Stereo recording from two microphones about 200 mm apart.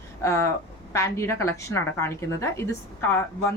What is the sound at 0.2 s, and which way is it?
A woman's voice, 15° left (ahead or behind).